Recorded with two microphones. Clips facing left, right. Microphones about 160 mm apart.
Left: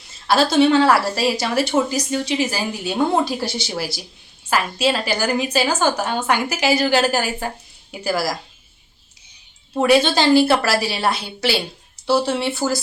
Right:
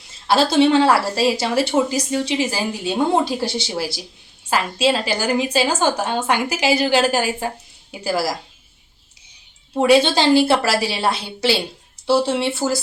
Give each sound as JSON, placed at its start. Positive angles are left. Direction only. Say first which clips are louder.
{"t": 0.3, "sound": "speech", "louder": "even", "side_deg": -25}
{"t": 9.7, "sound": "speech", "louder": "right 1 dB", "side_deg": -25}